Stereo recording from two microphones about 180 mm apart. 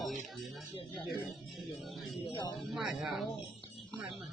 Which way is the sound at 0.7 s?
30° left (ahead or behind).